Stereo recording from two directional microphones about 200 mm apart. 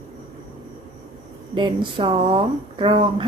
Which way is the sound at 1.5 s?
25° right (ahead or behind).